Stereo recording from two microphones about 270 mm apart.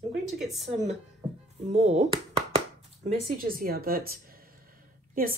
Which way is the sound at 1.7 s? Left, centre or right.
Right.